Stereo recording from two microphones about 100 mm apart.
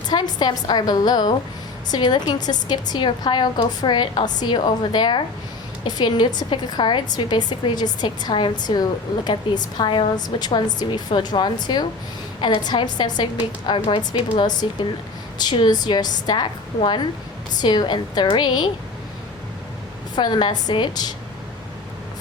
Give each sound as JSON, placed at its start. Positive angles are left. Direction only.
{"t": 0.1, "sound": "a woman's voice", "side_deg": 45}
{"t": 20.1, "sound": "a woman's voice", "side_deg": 50}